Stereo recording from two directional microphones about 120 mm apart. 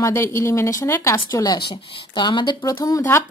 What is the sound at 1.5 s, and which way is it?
Speech, 40° left (ahead or behind).